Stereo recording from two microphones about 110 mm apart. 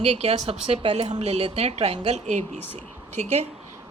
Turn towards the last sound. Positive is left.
turn(degrees=15)  # may be behind; listen again after turning